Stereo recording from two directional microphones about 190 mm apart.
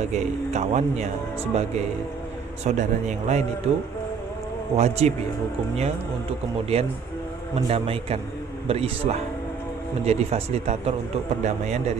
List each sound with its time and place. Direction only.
0.1 s speech: 40° right (ahead or behind)
2.6 s speech: 40° right (ahead or behind)
7.7 s speech: 30° right (ahead or behind)